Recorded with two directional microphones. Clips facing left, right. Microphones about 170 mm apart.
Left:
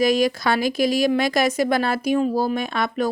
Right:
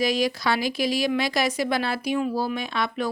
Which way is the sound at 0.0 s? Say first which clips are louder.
Left 5 dB; 50° left (ahead or behind).